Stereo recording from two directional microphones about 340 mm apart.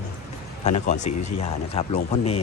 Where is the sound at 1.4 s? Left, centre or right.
Centre.